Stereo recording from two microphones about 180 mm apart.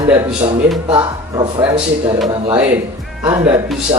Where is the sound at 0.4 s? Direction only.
25° right (ahead or behind).